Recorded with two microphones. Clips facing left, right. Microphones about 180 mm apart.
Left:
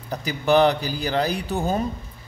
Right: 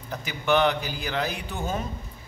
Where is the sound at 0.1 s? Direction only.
35° left (ahead or behind).